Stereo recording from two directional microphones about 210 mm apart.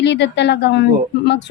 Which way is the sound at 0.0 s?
55° left (ahead or behind).